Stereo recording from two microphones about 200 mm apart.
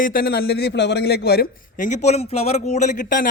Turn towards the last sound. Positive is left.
turn(degrees=40)  # may be behind; listen again after turning